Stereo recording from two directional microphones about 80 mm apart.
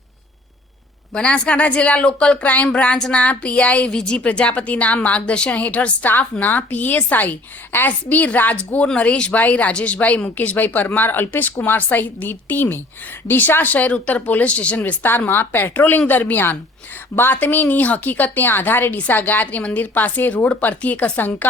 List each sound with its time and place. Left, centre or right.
1.1 s speech: centre